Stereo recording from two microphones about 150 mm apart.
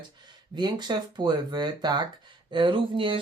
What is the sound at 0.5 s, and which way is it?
Speech, 30° right (ahead or behind).